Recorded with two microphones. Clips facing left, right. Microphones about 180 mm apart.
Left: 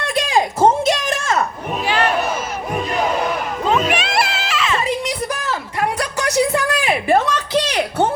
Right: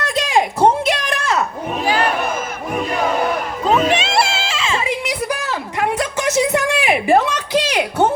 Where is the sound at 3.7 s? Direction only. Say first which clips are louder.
Right 3 dB; 25° right (ahead or behind).